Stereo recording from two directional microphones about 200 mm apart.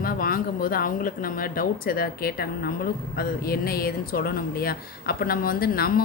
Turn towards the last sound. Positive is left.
turn(degrees=50)  # may be behind; listen again after turning